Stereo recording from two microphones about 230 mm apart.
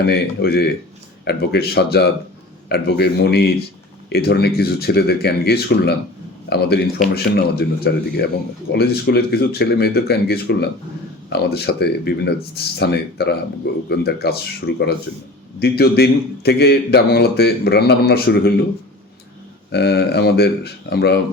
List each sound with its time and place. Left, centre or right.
0.0 s a man's voice: left
19.7 s a man's voice: left